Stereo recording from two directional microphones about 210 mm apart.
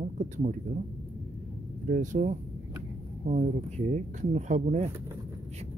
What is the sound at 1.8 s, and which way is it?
Speech, 40° right (ahead or behind).